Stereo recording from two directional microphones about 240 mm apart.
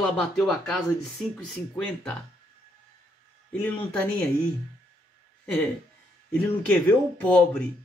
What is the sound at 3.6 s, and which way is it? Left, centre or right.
Speech, centre.